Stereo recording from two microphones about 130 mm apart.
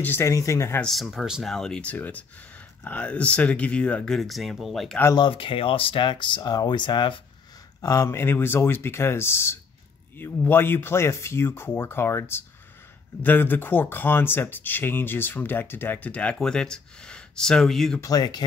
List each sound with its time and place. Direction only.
0.0 s speech: 20° left (ahead or behind)
0.7 s speech: centre (ahead or behind)
5.1 s speech: 40° left (ahead or behind)
7.8 s speech: 25° left (ahead or behind); by 18.0 s centre (ahead or behind)
18.0 s speech: 30° left (ahead or behind)